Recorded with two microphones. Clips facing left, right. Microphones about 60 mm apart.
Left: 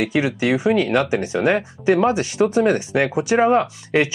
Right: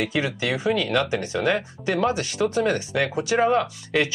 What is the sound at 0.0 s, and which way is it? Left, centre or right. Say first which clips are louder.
Speech: left 5 dB; centre.